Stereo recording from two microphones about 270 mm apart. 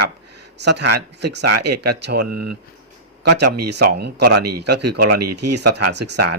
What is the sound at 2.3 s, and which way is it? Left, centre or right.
Speech, right.